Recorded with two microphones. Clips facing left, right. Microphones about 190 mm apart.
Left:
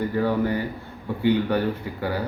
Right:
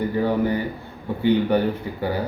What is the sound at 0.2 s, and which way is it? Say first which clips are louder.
A man's voice: right 1 dB; 20° right (ahead or behind).